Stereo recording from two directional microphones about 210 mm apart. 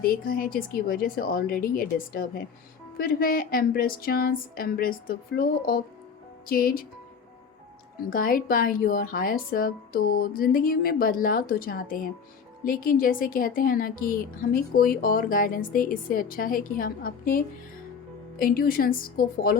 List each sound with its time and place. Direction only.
0.0 s speech: 45° left (ahead or behind)
8.1 s speech: 40° left (ahead or behind)